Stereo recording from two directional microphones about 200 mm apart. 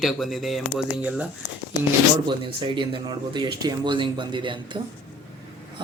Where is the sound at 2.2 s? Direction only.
25° right (ahead or behind).